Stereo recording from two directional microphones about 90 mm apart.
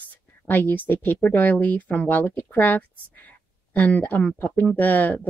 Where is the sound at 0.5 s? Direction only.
20° left (ahead or behind).